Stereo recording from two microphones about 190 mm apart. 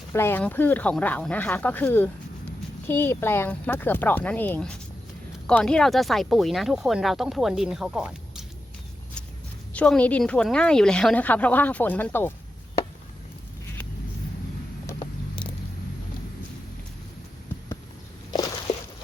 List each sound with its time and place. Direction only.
0.1 s a woman's voice: 10° left (ahead or behind); by 8.4 s 5° right (ahead or behind)
9.7 s a woman's voice: 5° left (ahead or behind)
18.3 s walk: 20° left (ahead or behind)